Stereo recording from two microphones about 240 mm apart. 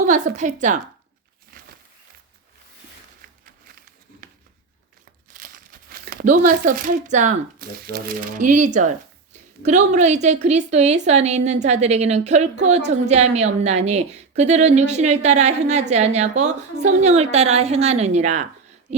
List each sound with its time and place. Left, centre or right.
0.1 s speech: right
3.2 s a sound: right
5.9 s a woman's voice: right